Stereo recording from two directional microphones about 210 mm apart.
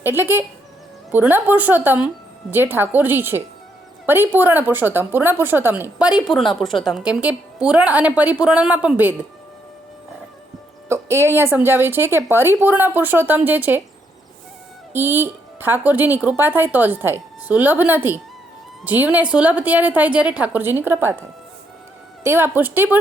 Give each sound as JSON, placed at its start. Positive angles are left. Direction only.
{"t": 0.0, "sound": "speech", "side_deg": -10}
{"t": 10.8, "sound": "a woman's voice", "side_deg": -15}
{"t": 14.9, "sound": "speech", "side_deg": -10}
{"t": 22.2, "sound": "speech", "side_deg": -10}